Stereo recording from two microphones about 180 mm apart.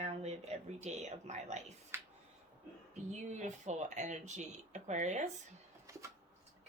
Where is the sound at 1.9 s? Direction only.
15° right (ahead or behind).